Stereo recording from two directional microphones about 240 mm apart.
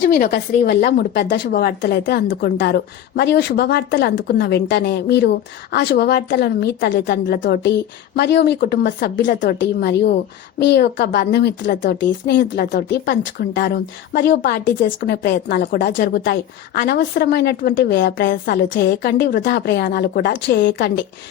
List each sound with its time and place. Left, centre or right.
0.0 s a woman's voice: left